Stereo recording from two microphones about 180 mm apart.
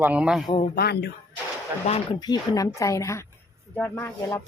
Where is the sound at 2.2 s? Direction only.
20° left (ahead or behind).